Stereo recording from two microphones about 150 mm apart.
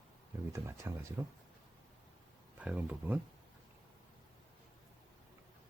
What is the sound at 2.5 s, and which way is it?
Speech, 10° right (ahead or behind).